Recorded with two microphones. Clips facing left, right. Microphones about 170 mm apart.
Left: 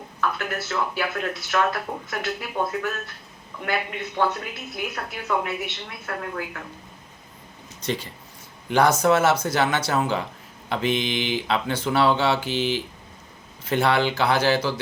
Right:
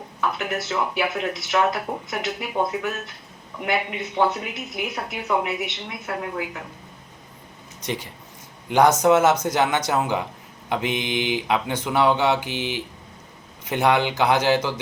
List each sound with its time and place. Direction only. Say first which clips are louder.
0.2 s speech: right 1 dB; 15° right (ahead or behind)
7.9 s speech: left 1 dB; 15° right (ahead or behind)